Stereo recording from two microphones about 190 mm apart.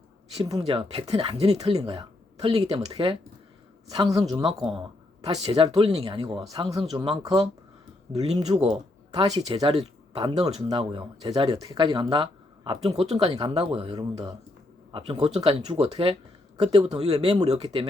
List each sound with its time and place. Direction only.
0.6 s speech: 30° right (ahead or behind)
6.5 s speech: 20° right (ahead or behind)